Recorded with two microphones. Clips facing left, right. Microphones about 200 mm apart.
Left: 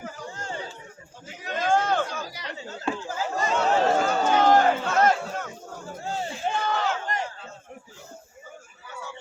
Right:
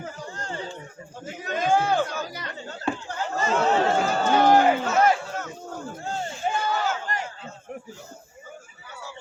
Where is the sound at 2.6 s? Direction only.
5° left (ahead or behind).